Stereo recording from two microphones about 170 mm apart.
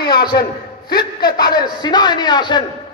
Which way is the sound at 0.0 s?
25° left (ahead or behind).